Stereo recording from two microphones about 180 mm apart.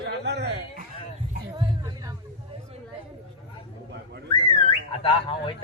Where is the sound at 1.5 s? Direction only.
20° right (ahead or behind).